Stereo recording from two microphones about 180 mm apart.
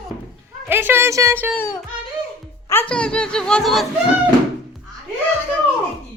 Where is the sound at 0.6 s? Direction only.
10° right (ahead or behind).